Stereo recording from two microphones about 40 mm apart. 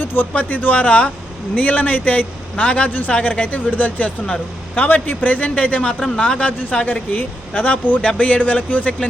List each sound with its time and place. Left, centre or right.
0.0 s a sound: left
0.3 s speech: left
2.6 s speech: left
6.6 s speech: left